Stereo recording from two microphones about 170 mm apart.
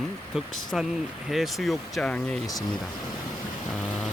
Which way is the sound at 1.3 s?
Centre (ahead or behind).